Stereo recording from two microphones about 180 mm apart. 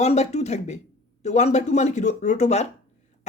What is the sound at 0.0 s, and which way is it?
Speech, 35° left (ahead or behind).